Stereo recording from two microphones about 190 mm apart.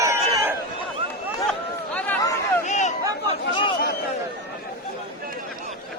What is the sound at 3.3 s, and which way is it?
Chatter, 25° left (ahead or behind).